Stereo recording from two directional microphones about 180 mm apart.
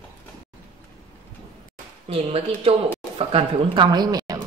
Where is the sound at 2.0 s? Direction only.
35° right (ahead or behind).